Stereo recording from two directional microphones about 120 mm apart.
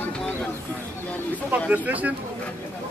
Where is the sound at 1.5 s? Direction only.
15° right (ahead or behind).